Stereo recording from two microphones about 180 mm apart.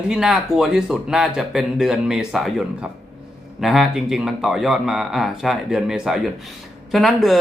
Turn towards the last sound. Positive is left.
turn(degrees=0)  # may be behind; listen again after turning